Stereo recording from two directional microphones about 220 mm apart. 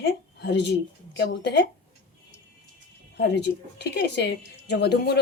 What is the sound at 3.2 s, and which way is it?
Speech, 50° left (ahead or behind).